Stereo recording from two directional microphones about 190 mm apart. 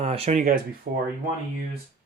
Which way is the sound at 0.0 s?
30° right (ahead or behind).